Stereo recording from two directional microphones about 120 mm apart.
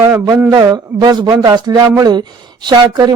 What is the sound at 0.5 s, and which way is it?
Speech, 30° right (ahead or behind).